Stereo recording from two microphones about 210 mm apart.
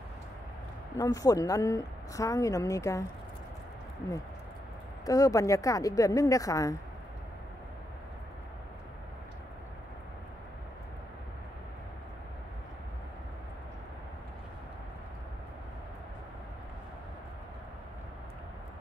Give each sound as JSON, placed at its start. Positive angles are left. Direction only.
{"t": 0.9, "sound": "a woman's voice", "side_deg": 15}
{"t": 5.0, "sound": "a woman's voice", "side_deg": 15}